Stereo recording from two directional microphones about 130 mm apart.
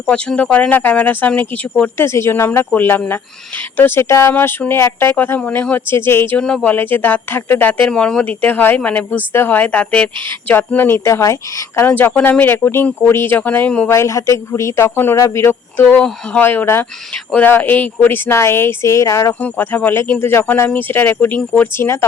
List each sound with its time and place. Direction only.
0.1 s speech: 10° left (ahead or behind)
13.9 s speech: 25° left (ahead or behind)